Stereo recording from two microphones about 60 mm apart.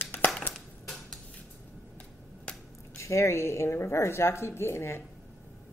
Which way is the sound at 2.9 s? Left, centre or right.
Left.